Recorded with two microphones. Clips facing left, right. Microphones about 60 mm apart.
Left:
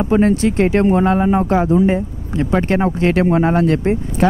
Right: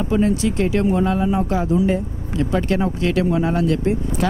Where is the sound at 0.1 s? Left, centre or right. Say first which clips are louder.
Left 4 dB; left.